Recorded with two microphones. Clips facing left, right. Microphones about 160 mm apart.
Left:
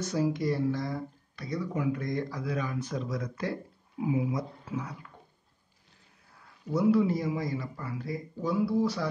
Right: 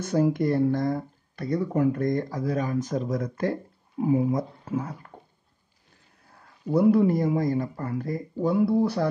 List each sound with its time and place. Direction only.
0.0 s speech: 55° right (ahead or behind)
6.7 s speech: 55° right (ahead or behind)